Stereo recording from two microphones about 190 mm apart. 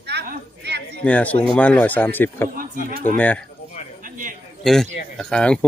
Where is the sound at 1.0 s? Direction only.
5° left (ahead or behind).